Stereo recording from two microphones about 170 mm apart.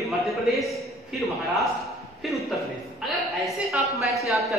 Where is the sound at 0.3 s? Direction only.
Centre (ahead or behind).